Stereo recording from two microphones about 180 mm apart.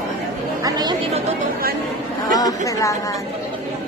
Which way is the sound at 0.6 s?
20° right (ahead or behind).